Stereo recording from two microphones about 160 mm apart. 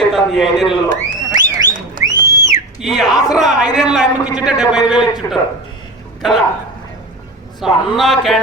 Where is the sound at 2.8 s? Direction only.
Centre (ahead or behind).